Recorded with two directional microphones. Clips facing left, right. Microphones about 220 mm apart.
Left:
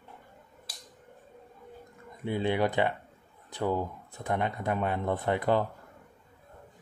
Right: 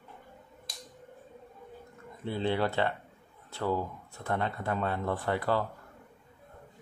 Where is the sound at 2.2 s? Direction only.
15° left (ahead or behind).